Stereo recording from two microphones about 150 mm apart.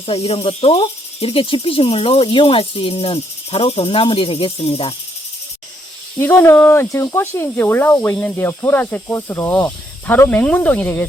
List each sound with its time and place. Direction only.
0.0 s speech: 40° left (ahead or behind)
6.1 s speech: 15° left (ahead or behind)